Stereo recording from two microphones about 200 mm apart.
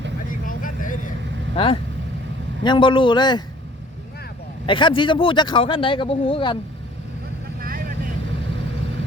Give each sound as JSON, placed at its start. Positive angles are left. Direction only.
{"t": 0.3, "sound": "vehicle", "side_deg": 40}
{"t": 1.5, "sound": "a man's voice", "side_deg": 25}
{"t": 4.6, "sound": "a man's voice", "side_deg": 25}
{"t": 7.6, "sound": "vehicle", "side_deg": -45}